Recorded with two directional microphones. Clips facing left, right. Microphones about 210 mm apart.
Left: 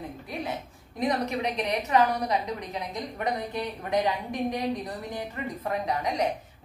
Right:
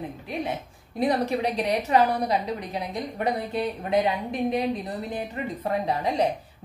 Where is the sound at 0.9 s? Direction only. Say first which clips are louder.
Right 4 dB; 30° right (ahead or behind).